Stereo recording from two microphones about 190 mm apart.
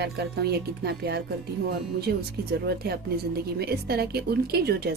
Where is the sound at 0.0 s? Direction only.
60° right (ahead or behind).